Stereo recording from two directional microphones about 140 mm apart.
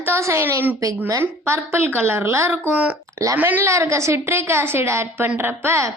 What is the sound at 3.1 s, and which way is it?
A woman's voice, 20° right (ahead or behind).